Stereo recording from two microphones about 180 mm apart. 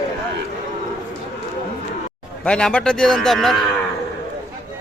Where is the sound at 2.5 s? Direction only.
5° left (ahead or behind).